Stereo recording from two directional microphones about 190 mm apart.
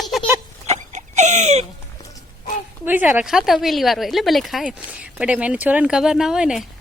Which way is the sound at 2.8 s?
10° right (ahead or behind).